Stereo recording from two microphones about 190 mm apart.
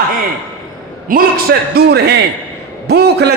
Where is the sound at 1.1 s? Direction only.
50° right (ahead or behind).